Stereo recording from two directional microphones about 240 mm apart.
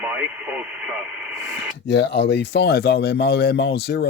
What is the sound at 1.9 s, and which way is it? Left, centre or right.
Speech, left.